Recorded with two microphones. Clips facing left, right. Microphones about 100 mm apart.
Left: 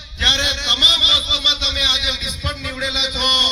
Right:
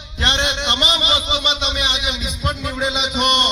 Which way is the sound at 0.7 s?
50° right (ahead or behind).